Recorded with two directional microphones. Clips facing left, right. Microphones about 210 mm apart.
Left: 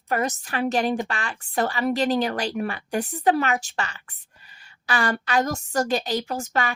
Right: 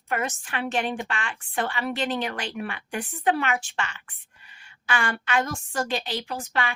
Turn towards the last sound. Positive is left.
turn(degrees=45)  # may be behind; listen again after turning